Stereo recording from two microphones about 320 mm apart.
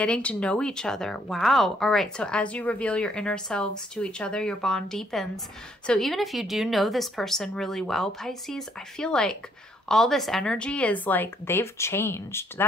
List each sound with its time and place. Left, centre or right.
0.0 s a woman's voice: centre